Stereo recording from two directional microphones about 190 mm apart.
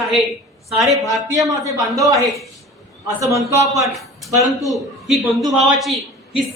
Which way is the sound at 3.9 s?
Centre (ahead or behind).